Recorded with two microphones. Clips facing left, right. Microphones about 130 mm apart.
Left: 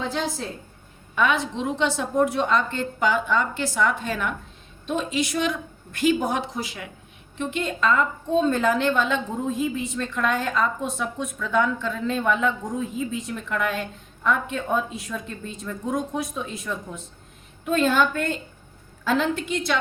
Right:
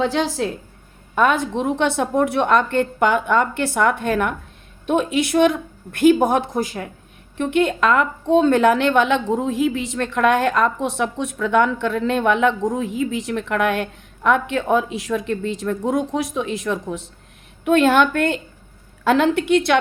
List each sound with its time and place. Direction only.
0.0 s a woman's voice: 85° right
1.1 s a woman's voice: 45° right (ahead or behind)
7.3 s a woman's voice: 65° right (ahead or behind)